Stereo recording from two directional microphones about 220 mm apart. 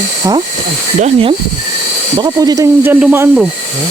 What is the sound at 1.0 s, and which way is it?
Speech, 25° right (ahead or behind).